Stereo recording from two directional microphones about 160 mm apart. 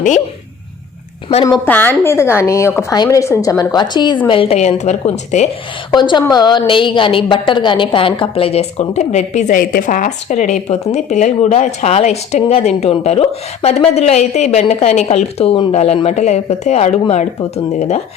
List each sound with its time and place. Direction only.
1.6 s a woman's voice: 10° left (ahead or behind); by 5.5 s 45° left (ahead or behind)
5.9 s a woman's voice: 30° left (ahead or behind); by 18.0 s 45° left (ahead or behind)